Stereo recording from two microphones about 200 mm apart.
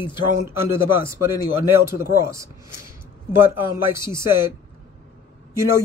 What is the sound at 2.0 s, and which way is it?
Speech, 15° right (ahead or behind).